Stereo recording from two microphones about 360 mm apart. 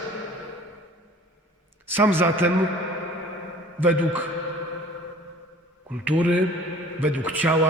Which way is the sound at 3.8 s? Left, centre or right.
Centre.